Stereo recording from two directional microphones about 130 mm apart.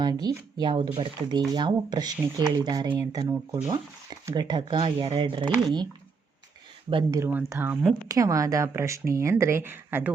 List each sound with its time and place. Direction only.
0.0 s speech: 30° right (ahead or behind)
7.3 s speech: 15° right (ahead or behind)
8.0 s speech: 25° right (ahead or behind)